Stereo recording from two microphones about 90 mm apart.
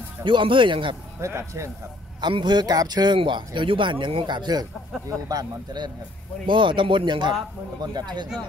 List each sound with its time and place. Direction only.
0.2 s speech: 65° right (ahead or behind)
1.2 s speech: 35° right (ahead or behind)
2.2 s speech: 55° right (ahead or behind)
6.4 s speech: 65° right (ahead or behind)